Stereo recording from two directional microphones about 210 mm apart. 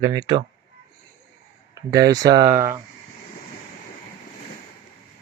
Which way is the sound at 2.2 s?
20° right (ahead or behind).